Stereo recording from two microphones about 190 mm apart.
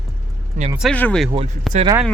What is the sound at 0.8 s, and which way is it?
Speech, 5° left (ahead or behind).